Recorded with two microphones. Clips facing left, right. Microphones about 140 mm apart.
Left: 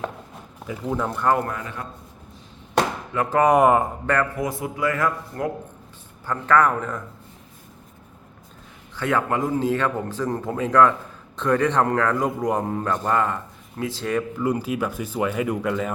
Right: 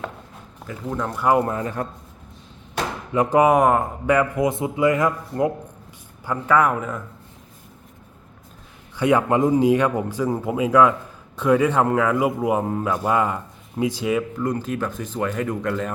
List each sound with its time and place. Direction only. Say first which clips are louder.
0.7 s speech: left 1 dB; 5° left (ahead or behind)
1.4 s speech: right 5 dB; 25° right (ahead or behind)
1.6 s a man's voice: right 7 dB; 40° right (ahead or behind)
3.1 s a man's voice: right 6 dB; 15° right (ahead or behind)
3.5 s speech: left 1 dB; centre (ahead or behind)
4.0 s a man's voice: right 4 dB; 10° right (ahead or behind)
9.0 s a man's voice: right 5 dB; 15° right (ahead or behind)
14.3 s speech: left 1 dB; 10° left (ahead or behind)